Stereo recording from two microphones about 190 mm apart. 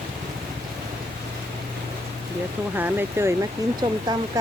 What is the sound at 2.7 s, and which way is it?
Speech, 10° right (ahead or behind).